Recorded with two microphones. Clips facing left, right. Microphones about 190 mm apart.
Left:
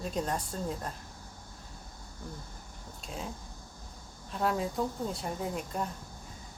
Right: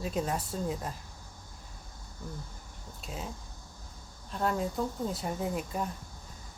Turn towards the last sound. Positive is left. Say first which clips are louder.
# right 1 dB
turn(degrees=-5)  # may be behind; listen again after turning